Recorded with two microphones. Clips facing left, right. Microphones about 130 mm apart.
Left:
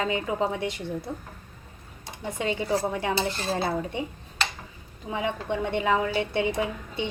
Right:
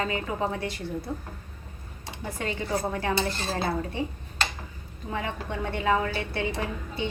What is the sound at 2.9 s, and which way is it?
Speech, 15° left (ahead or behind).